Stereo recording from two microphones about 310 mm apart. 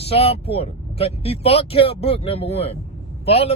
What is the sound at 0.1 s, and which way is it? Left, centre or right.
Speech, centre.